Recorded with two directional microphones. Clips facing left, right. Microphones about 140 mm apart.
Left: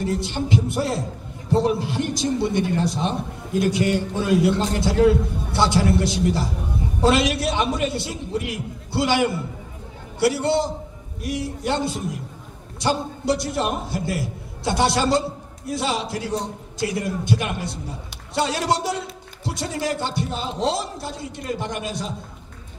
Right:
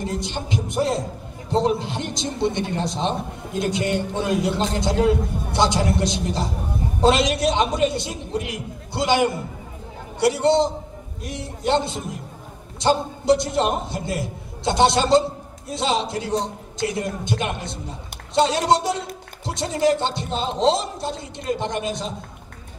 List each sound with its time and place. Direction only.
0.0 s a man's voice: 20° right (ahead or behind)